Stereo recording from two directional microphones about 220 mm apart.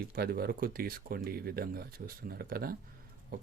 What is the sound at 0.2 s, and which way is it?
Speech, 45° right (ahead or behind).